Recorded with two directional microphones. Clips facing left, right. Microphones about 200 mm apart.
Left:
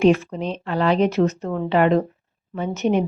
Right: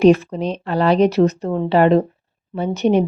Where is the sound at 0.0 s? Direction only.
35° right (ahead or behind).